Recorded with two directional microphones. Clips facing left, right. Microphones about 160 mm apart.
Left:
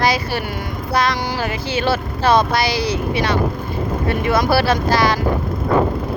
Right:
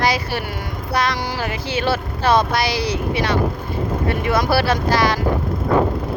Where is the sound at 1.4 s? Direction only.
35° left (ahead or behind).